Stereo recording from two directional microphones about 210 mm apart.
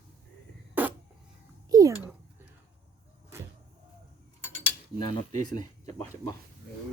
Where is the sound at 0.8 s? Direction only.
10° right (ahead or behind).